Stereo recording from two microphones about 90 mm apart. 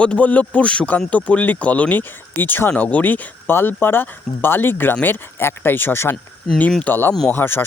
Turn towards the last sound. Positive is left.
turn(degrees=25)  # may be behind; listen again after turning